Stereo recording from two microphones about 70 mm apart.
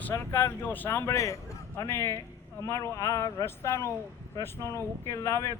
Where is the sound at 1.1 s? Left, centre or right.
Left.